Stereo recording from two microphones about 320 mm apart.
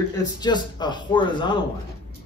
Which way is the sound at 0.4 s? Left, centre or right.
Centre.